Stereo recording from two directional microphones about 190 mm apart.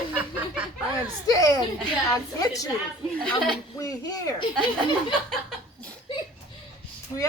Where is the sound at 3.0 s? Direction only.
5° left (ahead or behind).